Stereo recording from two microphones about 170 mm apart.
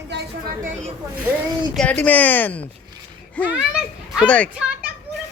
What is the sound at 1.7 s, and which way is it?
Speech, 5° left (ahead or behind).